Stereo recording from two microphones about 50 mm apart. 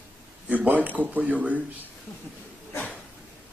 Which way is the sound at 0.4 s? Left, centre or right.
Right.